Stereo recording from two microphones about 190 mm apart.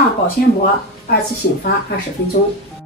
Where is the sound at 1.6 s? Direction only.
55° left (ahead or behind).